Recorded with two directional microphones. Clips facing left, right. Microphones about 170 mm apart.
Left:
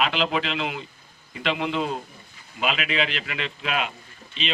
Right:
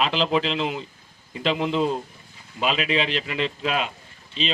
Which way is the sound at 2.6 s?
35° right (ahead or behind).